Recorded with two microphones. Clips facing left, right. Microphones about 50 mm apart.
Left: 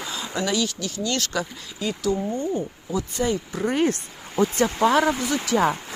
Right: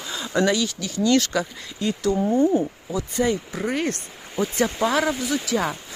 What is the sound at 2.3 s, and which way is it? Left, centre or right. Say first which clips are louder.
Speech: right 7 dB; centre.